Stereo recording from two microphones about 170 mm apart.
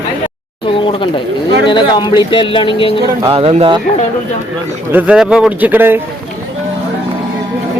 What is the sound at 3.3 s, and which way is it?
Speech, 35° right (ahead or behind).